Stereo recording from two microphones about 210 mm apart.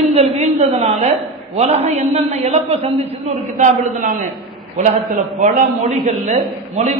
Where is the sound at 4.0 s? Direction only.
40° right (ahead or behind).